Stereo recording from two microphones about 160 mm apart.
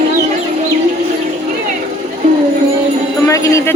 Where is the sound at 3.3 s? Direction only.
20° left (ahead or behind).